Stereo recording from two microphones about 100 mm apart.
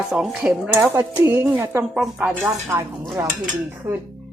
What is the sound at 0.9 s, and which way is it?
Speech, 25° right (ahead or behind).